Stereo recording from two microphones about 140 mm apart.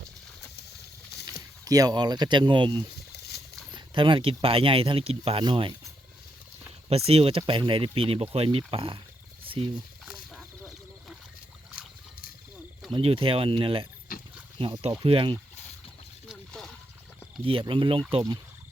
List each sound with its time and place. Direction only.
1.6 s speech: 25° right (ahead or behind)
6.9 s speech: 45° right (ahead or behind)
12.9 s speech: 40° right (ahead or behind)
14.1 s a sound: 90° left
14.6 s speech: 40° right (ahead or behind)
16.3 s a sound: 5° left (ahead or behind)
17.4 s speech: 40° right (ahead or behind)